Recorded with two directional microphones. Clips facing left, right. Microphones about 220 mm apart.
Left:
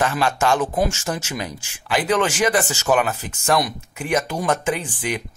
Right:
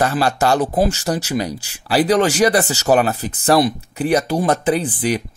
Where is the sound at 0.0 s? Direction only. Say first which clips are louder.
Right 3 dB; 40° right (ahead or behind).